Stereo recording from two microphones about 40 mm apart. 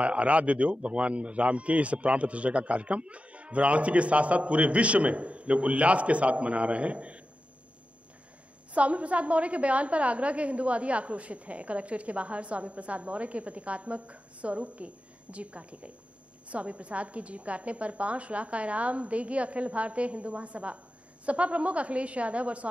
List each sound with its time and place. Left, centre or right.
0.0 s speech: right
8.7 s speech: right